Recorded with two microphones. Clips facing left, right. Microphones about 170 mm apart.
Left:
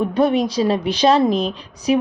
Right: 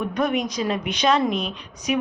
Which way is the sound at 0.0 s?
30° left (ahead or behind).